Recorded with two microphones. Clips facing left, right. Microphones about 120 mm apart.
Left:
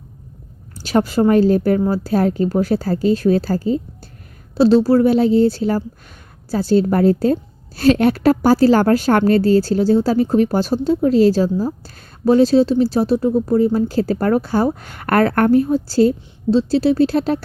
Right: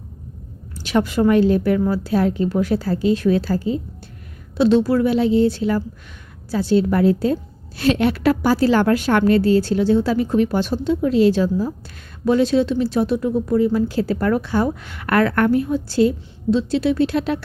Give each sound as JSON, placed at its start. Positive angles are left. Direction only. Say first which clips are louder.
{"t": 0.8, "sound": "speech", "louder": "left 2 dB", "side_deg": 40}